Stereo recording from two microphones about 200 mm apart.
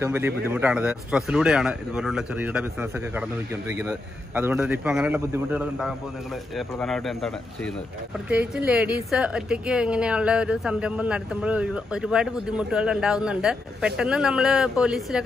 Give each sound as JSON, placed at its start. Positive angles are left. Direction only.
{"t": 0.0, "sound": "a woman's voice", "side_deg": -10}